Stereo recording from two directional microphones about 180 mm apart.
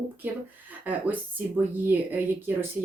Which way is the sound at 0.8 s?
10° right (ahead or behind).